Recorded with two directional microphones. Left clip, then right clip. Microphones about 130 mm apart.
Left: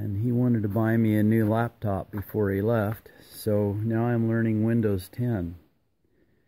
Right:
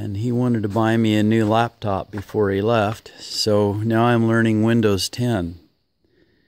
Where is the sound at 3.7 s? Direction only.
60° right (ahead or behind).